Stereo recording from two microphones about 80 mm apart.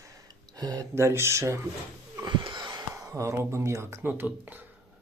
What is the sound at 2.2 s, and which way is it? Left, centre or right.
Wheeze, right.